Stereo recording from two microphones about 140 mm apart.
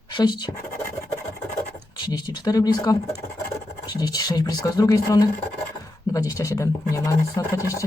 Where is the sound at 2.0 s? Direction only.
30° left (ahead or behind).